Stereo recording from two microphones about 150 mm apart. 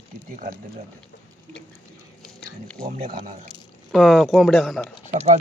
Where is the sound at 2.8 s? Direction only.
65° right (ahead or behind).